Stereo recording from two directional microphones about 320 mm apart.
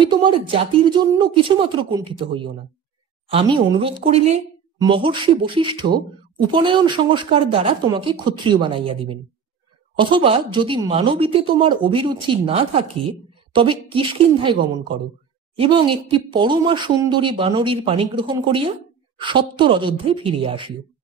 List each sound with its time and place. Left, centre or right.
0.0 s speech: centre